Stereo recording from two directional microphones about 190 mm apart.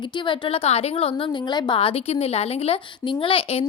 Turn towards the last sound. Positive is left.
turn(degrees=30)  # may be behind; listen again after turning